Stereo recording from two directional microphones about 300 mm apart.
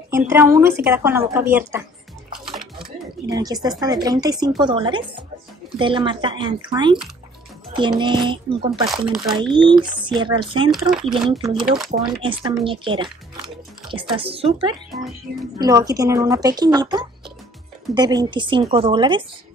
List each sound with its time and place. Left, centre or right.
0.1 s speech: centre
2.3 s music: centre
3.3 s speech: centre
8.0 s speech: centre
9.1 s speech: centre
9.4 s speech: centre
10.7 s speech: centre
11.1 s speech: centre